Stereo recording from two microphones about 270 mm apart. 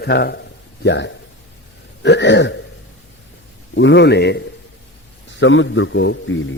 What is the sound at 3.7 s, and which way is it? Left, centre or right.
A man's voice, left.